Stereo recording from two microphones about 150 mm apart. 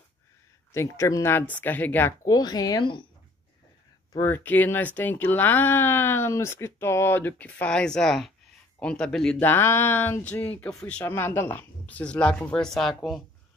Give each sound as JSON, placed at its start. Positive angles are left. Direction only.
{"t": 0.7, "sound": "speech", "side_deg": 20}
{"t": 2.2, "sound": "speech", "side_deg": 25}
{"t": 4.1, "sound": "speech", "side_deg": 15}